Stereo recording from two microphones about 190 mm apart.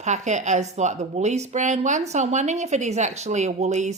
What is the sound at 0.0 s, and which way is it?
Speech, 40° right (ahead or behind).